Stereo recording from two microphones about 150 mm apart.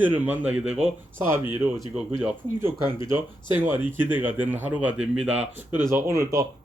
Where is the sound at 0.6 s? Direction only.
45° right (ahead or behind).